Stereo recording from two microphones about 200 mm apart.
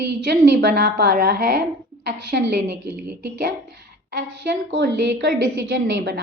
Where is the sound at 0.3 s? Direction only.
55° right (ahead or behind).